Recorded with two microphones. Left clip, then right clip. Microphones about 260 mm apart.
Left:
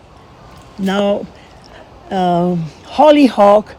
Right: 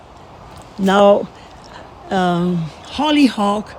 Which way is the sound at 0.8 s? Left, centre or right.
Centre.